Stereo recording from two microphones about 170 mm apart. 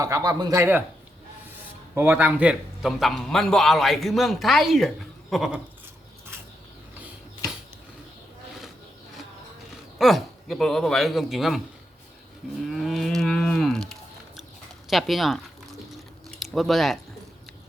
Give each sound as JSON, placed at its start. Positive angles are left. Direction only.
{"t": 0.0, "sound": "speech", "side_deg": -20}
{"t": 2.0, "sound": "a man's voice", "side_deg": -10}
{"t": 10.0, "sound": "a man's voice", "side_deg": 0}
{"t": 12.6, "sound": "cattle", "side_deg": 0}
{"t": 14.8, "sound": "a man's voice", "side_deg": 0}
{"t": 16.4, "sound": "speech", "side_deg": 0}